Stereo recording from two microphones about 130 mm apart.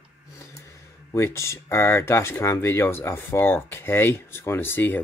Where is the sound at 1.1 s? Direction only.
20° left (ahead or behind).